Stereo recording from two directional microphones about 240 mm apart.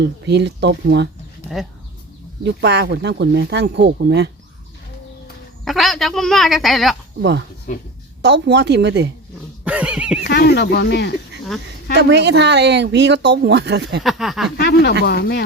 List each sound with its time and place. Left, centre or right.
0.0 s speech: right
2.4 s speech: right
5.6 s speech: centre
7.2 s speech: right
9.6 s speech: centre
10.2 s speech: left
11.9 s speech: right
14.0 s speech: centre
14.6 s speech: left